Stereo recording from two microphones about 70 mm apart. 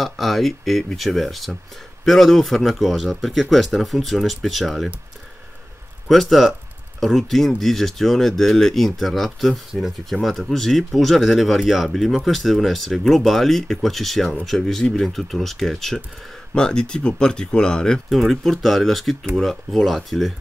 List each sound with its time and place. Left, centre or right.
0.0 s speech: centre
6.0 s speech: centre
18.1 s speech: centre